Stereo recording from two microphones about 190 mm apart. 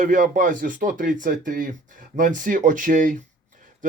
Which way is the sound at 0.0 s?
45° right (ahead or behind).